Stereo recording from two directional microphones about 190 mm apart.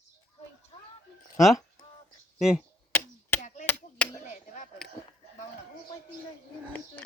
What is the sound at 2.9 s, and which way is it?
Chop, 10° left (ahead or behind).